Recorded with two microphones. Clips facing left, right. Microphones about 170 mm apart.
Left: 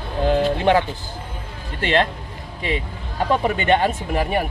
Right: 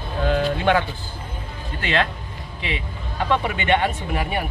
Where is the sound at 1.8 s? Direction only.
35° left (ahead or behind).